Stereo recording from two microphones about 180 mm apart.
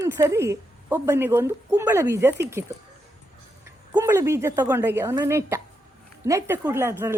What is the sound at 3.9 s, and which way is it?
Speech, 15° right (ahead or behind).